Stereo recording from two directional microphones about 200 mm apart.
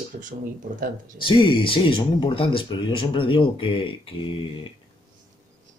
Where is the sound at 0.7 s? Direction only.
45° right (ahead or behind).